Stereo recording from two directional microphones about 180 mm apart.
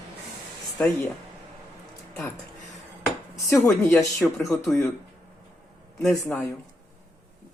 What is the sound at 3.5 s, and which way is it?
Speech, 15° left (ahead or behind).